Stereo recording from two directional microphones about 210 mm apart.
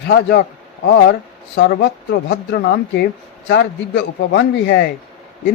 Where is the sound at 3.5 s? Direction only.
55° left (ahead or behind).